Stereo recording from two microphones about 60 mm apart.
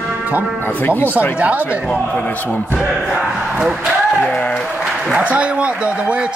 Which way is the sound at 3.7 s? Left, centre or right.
Centre.